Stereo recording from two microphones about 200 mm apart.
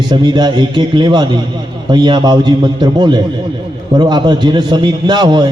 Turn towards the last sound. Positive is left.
turn(degrees=-20)  # may be behind; listen again after turning